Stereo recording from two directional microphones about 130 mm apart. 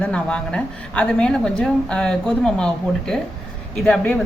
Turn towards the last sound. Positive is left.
turn(degrees=5)  # may be behind; listen again after turning